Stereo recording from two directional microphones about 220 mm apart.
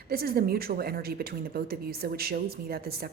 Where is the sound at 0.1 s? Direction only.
45° right (ahead or behind).